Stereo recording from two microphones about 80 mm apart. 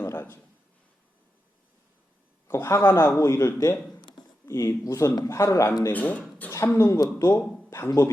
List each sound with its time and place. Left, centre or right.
0.0 s a sound: left
2.5 s speech: left
5.9 s speech: centre
6.5 s speech: left